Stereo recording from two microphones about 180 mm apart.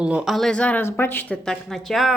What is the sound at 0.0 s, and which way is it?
A woman's voice, 5° right (ahead or behind).